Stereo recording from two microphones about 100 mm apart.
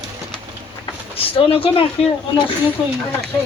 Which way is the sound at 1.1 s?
70° left (ahead or behind).